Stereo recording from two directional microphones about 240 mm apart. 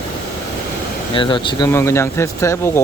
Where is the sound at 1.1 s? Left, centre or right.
Left.